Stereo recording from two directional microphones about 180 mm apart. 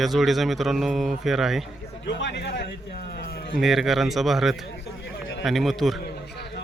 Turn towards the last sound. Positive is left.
turn(degrees=65)  # may be behind; listen again after turning